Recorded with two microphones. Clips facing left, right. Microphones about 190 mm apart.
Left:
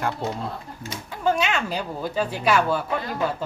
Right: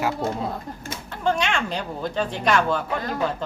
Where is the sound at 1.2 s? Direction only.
5° left (ahead or behind).